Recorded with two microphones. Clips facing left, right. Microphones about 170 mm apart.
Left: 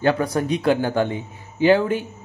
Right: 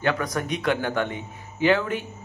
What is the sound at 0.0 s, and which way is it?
A man's voice, 30° left (ahead or behind).